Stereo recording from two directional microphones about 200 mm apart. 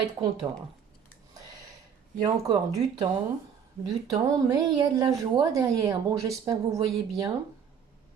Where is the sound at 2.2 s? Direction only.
25° right (ahead or behind).